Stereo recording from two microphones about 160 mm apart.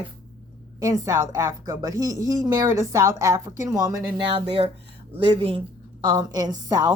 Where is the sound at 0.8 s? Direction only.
20° right (ahead or behind).